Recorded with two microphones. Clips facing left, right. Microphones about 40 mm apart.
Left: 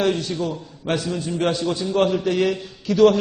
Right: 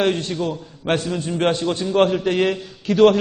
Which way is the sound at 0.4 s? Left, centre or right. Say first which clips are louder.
Right 2 dB; right.